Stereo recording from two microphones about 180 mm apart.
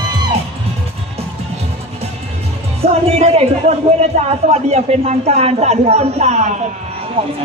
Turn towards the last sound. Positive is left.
turn(degrees=-30)  # may be behind; listen again after turning